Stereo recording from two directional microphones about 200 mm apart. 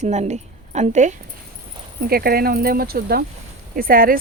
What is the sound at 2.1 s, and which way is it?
Speech, 50° right (ahead or behind).